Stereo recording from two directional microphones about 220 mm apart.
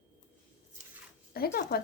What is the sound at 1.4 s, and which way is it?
Speech, 45° left (ahead or behind).